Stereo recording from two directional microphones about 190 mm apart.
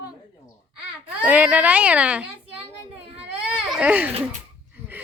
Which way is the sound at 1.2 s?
10° right (ahead or behind).